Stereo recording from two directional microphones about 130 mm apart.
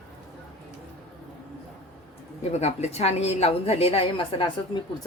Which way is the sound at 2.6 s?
55° left (ahead or behind).